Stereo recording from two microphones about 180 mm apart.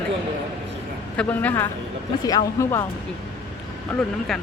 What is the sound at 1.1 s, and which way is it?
Speech, 10° left (ahead or behind).